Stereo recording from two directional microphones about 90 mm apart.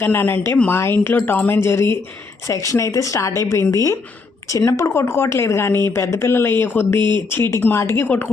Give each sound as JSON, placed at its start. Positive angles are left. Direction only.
{"t": 0.0, "sound": "speech", "side_deg": 25}